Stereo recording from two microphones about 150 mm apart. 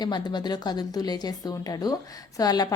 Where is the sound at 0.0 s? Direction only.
30° left (ahead or behind).